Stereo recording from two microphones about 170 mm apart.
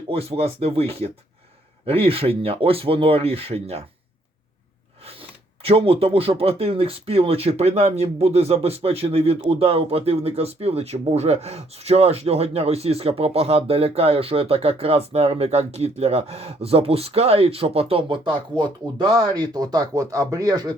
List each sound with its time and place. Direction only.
0.1 s speech: 35° right (ahead or behind)
5.6 s speech: 35° right (ahead or behind)